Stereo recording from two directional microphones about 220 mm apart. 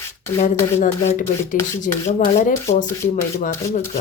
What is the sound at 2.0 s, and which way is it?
A woman's voice, 35° left (ahead or behind).